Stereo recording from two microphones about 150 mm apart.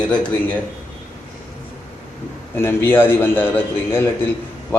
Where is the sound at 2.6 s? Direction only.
15° left (ahead or behind).